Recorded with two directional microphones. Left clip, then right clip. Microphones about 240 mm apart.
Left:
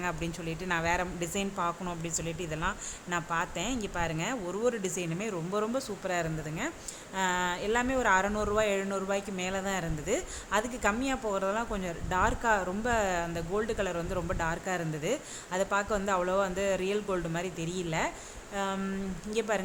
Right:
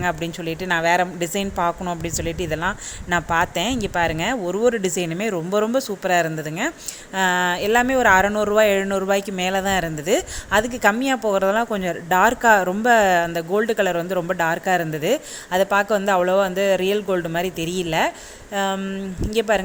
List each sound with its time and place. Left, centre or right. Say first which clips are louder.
0.0 s speech: right 11 dB; centre